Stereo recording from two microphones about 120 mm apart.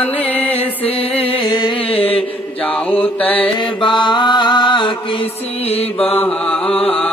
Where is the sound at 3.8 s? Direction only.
40° left (ahead or behind).